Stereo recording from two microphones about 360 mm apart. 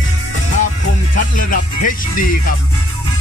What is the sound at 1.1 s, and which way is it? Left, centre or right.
Speech, left.